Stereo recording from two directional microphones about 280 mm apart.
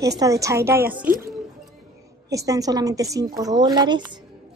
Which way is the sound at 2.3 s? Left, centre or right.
Centre.